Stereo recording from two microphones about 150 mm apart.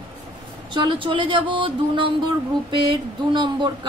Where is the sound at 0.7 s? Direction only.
35° right (ahead or behind).